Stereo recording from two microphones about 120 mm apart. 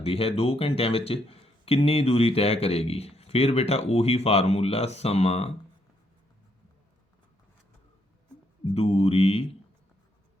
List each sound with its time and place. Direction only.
0.0 s speech: 55° left (ahead or behind)
8.7 s speech: 55° left (ahead or behind)